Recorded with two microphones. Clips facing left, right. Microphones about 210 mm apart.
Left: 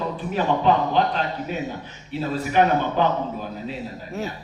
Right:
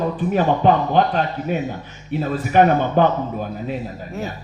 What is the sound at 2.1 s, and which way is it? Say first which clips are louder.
Music: right 4 dB; 50° right (ahead or behind).